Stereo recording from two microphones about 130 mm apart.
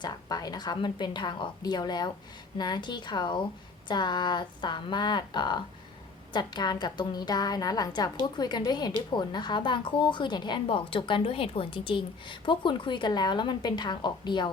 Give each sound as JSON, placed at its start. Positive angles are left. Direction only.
{"t": 0.0, "sound": "a woman's voice", "side_deg": 30}